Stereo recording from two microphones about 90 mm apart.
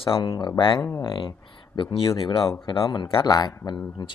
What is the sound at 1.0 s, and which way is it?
Speech, 60° left (ahead or behind).